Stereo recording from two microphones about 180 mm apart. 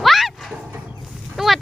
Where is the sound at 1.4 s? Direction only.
Centre (ahead or behind).